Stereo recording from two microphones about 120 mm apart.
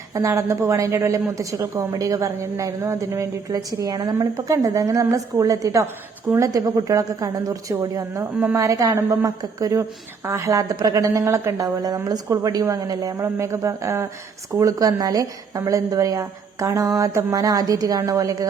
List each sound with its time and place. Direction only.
0.1 s a woman's voice: 25° right (ahead or behind)